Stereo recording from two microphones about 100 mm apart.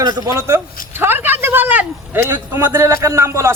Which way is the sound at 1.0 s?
20° right (ahead or behind).